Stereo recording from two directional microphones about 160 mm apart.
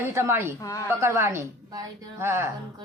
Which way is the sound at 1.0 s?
20° right (ahead or behind).